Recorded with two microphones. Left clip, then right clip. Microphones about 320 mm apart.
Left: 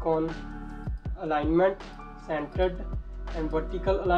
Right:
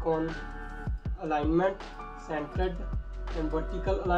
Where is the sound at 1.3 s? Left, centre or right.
Centre.